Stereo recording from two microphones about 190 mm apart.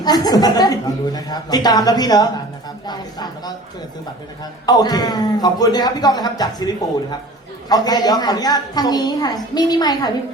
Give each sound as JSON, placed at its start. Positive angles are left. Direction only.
{"t": 0.0, "sound": "a man's voice", "side_deg": 20}
{"t": 4.6, "sound": "a man's voice", "side_deg": 20}